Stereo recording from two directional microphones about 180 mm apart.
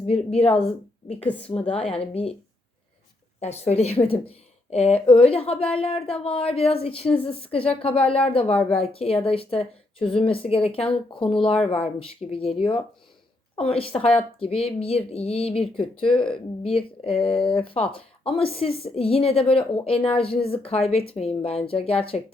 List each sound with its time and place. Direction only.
0.0 s a woman's voice: 35° left (ahead or behind)
1.6 s a woman's voice: 5° left (ahead or behind)
1.9 s speech: 35° left (ahead or behind)
3.4 s speech: 35° left (ahead or behind)